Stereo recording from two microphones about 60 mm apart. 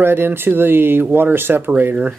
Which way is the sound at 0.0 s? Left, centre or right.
Right.